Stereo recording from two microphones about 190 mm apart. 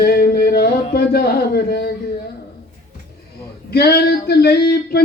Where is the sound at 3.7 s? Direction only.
55° left (ahead or behind).